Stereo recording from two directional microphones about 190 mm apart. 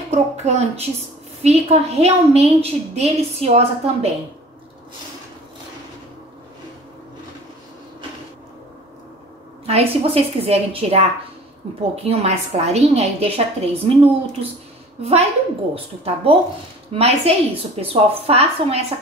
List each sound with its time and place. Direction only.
0.1 s a woman's voice: 35° right (ahead or behind)
9.7 s a woman's voice: 30° right (ahead or behind)